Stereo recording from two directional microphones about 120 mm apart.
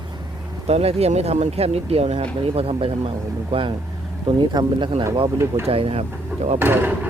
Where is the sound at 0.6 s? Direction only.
60° right (ahead or behind).